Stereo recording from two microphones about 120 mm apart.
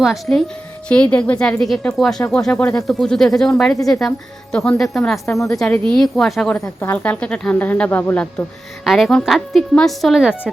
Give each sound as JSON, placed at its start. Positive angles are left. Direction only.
{"t": 0.0, "sound": "a woman's voice", "side_deg": 0}
{"t": 5.2, "sound": "a woman's voice", "side_deg": 25}
{"t": 5.5, "sound": "a woman's voice", "side_deg": 5}
{"t": 6.6, "sound": "a woman's voice", "side_deg": 20}